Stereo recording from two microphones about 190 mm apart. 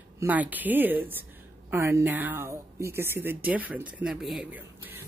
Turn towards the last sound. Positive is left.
turn(degrees=-5)  # may be behind; listen again after turning